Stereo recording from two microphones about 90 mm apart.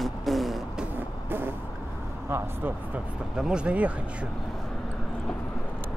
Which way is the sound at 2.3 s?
25° right (ahead or behind).